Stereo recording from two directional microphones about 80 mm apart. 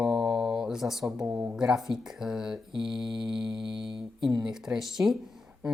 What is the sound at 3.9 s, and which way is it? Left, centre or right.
Speech, right.